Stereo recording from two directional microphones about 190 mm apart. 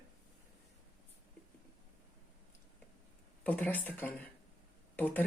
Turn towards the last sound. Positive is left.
turn(degrees=10)  # may be behind; listen again after turning